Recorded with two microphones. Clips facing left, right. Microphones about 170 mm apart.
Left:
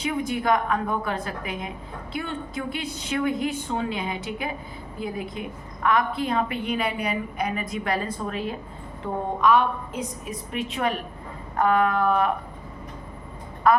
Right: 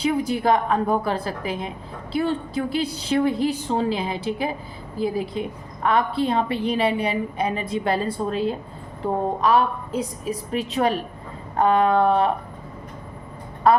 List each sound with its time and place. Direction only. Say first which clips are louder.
0.0 s a woman's voice: right 4 dB; 30° right (ahead or behind)
13.7 s speech: right 2 dB; 30° right (ahead or behind)